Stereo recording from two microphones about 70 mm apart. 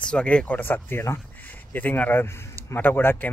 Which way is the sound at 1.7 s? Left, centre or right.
Left.